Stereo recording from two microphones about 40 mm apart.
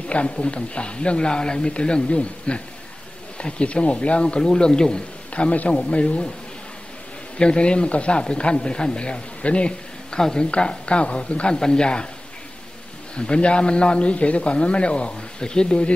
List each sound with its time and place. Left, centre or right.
0.1 s speech: left
5.3 s speech: left
7.3 s speech: left
13.1 s speech: left